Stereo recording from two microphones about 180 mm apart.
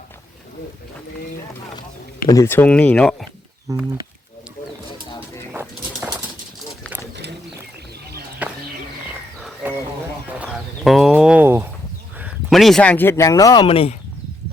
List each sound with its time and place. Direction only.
2.2 s speech: 15° left (ahead or behind)
3.7 s speech: 20° right (ahead or behind)
5.5 s bird: 10° right (ahead or behind)
8.4 s bird: 10° right (ahead or behind)
10.3 s a sound: 5° right (ahead or behind)
12.2 s speech: centre (ahead or behind); by 13.9 s 30° left (ahead or behind)